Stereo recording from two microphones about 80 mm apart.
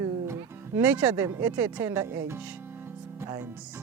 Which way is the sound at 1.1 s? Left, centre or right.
Right.